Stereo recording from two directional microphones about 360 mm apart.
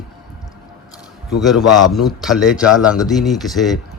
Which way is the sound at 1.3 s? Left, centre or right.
Centre.